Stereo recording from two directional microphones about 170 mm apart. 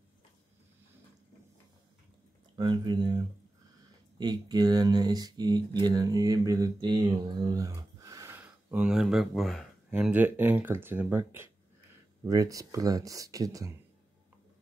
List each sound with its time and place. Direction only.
2.5 s speech: 25° right (ahead or behind)
4.2 s speech: 25° right (ahead or behind)